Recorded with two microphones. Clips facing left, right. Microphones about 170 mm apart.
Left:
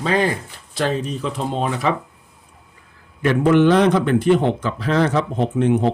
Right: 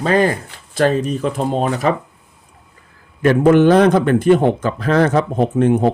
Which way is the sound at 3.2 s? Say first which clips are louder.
Right 4 dB; 45° right (ahead or behind).